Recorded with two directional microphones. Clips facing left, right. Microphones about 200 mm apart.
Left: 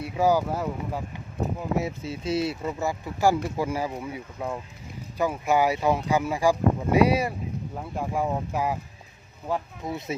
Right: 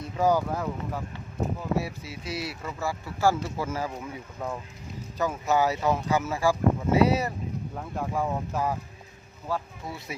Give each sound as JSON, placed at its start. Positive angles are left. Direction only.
{"t": 0.0, "sound": "speech", "side_deg": 10}